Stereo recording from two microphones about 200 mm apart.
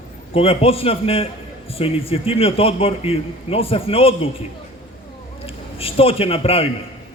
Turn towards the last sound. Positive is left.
turn(degrees=30)  # may be behind; listen again after turning